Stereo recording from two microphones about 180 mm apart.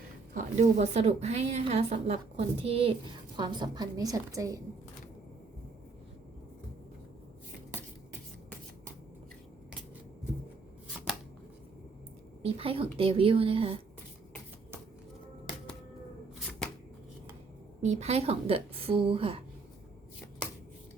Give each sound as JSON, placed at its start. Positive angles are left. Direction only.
{"t": 0.3, "sound": "a woman's voice", "side_deg": -40}
{"t": 12.4, "sound": "a woman's voice", "side_deg": -30}
{"t": 17.8, "sound": "a woman's voice", "side_deg": -35}